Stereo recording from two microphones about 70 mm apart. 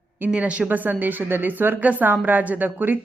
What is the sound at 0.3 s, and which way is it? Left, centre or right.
A woman's voice, centre.